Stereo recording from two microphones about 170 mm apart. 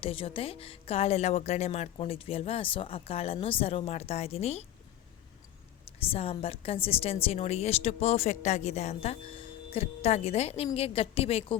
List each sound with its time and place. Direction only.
0.0 s a woman's voice: 35° left (ahead or behind)
6.0 s a woman's voice: 35° left (ahead or behind)